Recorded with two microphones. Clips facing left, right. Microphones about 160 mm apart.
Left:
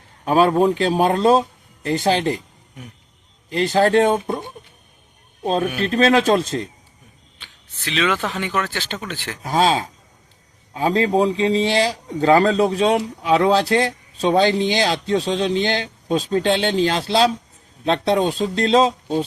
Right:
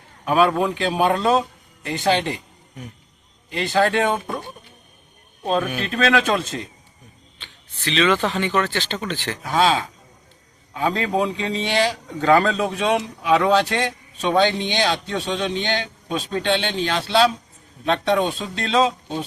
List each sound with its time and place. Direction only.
0.3 s a man's voice: 35° left (ahead or behind)
3.5 s a man's voice: 40° left (ahead or behind)
5.8 s a man's voice: 35° left (ahead or behind)
7.3 s speech: 10° left (ahead or behind)
9.4 s a man's voice: 40° left (ahead or behind)